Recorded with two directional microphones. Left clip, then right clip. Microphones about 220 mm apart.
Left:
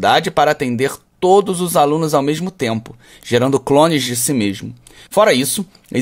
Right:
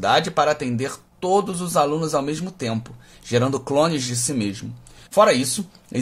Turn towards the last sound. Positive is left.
turn(degrees=35)  # may be behind; listen again after turning